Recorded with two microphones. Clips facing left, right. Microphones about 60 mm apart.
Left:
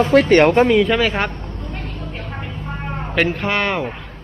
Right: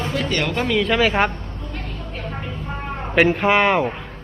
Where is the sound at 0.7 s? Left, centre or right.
Centre.